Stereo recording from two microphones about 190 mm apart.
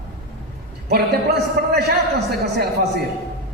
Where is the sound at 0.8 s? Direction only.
60° right (ahead or behind).